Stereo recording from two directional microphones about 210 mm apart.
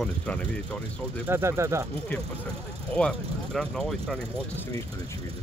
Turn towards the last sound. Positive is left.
turn(degrees=0)  # may be behind; listen again after turning